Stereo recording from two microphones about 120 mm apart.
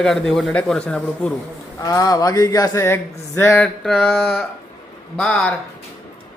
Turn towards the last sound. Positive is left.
turn(degrees=10)  # may be behind; listen again after turning